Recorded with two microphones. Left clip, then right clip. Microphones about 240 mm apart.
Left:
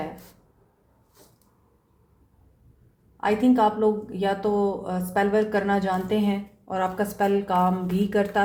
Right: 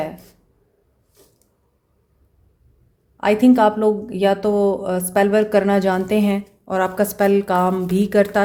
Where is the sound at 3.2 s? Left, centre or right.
Right.